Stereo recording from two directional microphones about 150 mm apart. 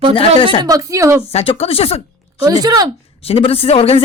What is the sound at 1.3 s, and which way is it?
Speech, 40° left (ahead or behind).